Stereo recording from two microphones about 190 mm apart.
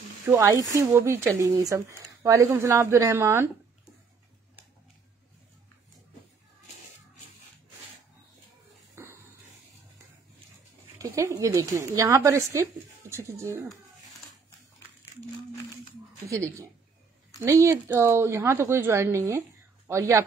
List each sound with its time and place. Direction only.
0.3 s speech: 15° right (ahead or behind)
8.9 s beatboxing: 15° right (ahead or behind)
11.0 s speech: 15° right (ahead or behind)
16.3 s speech: 15° right (ahead or behind)